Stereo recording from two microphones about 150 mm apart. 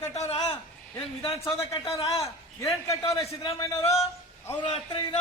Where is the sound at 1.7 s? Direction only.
20° left (ahead or behind).